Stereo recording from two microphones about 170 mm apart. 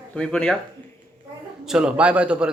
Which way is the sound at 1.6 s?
5° right (ahead or behind).